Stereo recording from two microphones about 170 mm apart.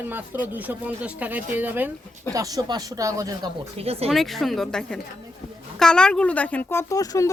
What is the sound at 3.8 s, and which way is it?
Speech, 35° right (ahead or behind).